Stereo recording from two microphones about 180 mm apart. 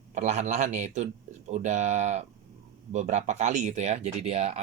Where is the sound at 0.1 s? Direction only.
40° right (ahead or behind).